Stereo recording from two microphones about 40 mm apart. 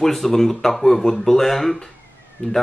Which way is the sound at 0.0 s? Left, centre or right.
Centre.